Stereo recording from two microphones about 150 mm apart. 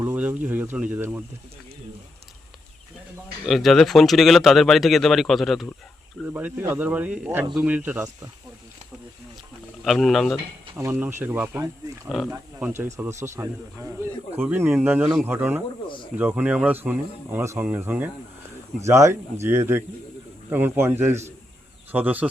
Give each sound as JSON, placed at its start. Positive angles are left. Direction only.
{"t": 0.0, "sound": "speech", "side_deg": -10}
{"t": 3.4, "sound": "speech", "side_deg": 0}
{"t": 6.2, "sound": "speech", "side_deg": -15}
{"t": 9.8, "sound": "speech", "side_deg": 0}
{"t": 10.8, "sound": "speech", "side_deg": -15}
{"t": 12.0, "sound": "speech", "side_deg": 0}
{"t": 12.5, "sound": "speech", "side_deg": -10}